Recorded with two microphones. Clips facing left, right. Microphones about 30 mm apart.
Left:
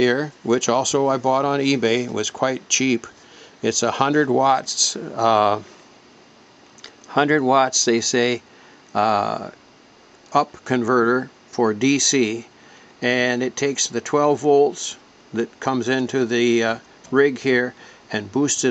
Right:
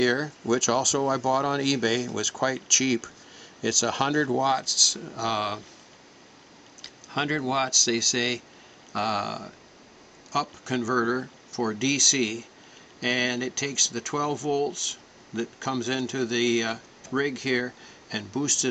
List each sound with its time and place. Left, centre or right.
0.0 s speech: centre
4.6 s speech: centre
4.9 s speech: left
7.1 s speech: left
8.0 s speech: centre
10.5 s speech: centre
15.3 s speech: centre
18.4 s speech: centre